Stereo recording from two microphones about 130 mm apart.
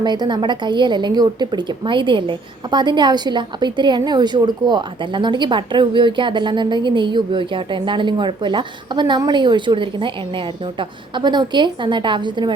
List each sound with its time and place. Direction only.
0.0 s a woman's voice: 35° right (ahead or behind)